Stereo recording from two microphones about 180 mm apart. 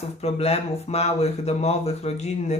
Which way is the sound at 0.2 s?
35° left (ahead or behind).